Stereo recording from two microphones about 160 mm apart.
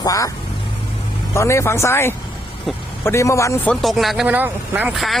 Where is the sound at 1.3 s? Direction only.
15° left (ahead or behind).